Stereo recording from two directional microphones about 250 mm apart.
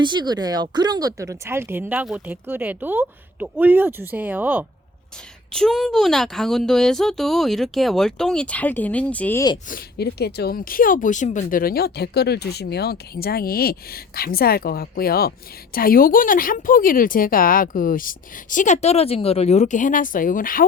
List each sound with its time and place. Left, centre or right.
0.0 s a woman's voice: centre
9.6 s a woman's voice: left